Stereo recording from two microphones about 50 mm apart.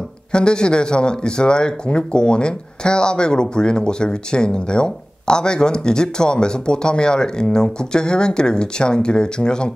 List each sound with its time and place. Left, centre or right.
0.3 s speech: centre